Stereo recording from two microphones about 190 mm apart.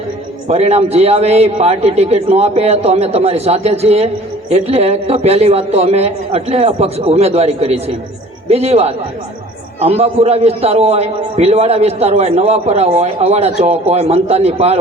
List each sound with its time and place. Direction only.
0.4 s a man's voice: 35° right (ahead or behind)